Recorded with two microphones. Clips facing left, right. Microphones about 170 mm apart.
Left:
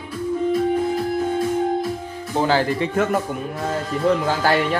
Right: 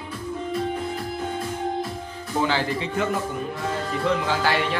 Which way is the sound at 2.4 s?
45° left (ahead or behind).